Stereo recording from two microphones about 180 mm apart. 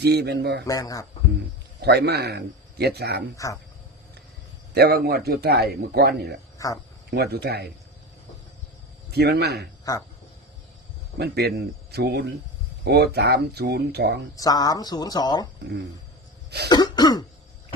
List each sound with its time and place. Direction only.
0.0 s a man's voice: 65° right (ahead or behind)
0.7 s speech: 20° left (ahead or behind)
1.8 s a man's voice: 65° right (ahead or behind)
3.3 s speech: 20° left (ahead or behind)
4.7 s a man's voice: 65° right (ahead or behind)
6.6 s speech: 20° left (ahead or behind)
7.1 s a man's voice: 65° right (ahead or behind)
9.1 s a man's voice: 65° right (ahead or behind)
9.9 s speech: 20° left (ahead or behind)
11.2 s a man's voice: 65° right (ahead or behind)
14.3 s speech: 20° left (ahead or behind)
16.6 s speech: 25° left (ahead or behind)